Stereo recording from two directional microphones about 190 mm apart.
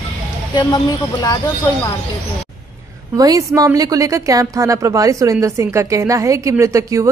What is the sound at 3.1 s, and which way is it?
A woman's voice, 20° right (ahead or behind).